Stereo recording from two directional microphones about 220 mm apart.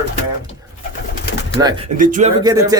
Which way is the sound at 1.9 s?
35° right (ahead or behind).